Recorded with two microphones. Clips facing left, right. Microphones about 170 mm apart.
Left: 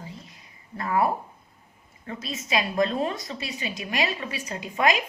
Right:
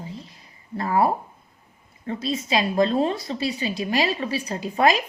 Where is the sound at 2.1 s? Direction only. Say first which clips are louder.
Right 5 dB; 30° right (ahead or behind).